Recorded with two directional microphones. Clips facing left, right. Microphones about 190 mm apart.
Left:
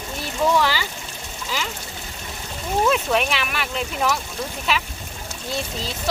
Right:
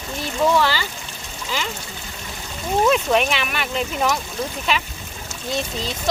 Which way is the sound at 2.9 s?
Centre (ahead or behind).